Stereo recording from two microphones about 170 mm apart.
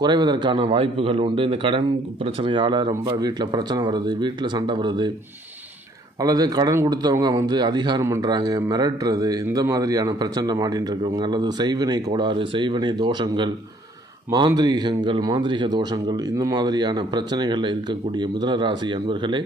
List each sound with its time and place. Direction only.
0.0 s a man's voice: 25° right (ahead or behind)
6.2 s a man's voice: 25° right (ahead or behind)